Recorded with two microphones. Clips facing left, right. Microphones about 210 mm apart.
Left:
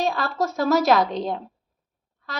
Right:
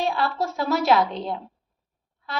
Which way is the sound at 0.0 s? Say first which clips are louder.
Left 1 dB; 40° left (ahead or behind).